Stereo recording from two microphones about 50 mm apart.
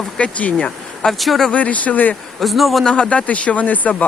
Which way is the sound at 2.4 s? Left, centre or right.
Centre.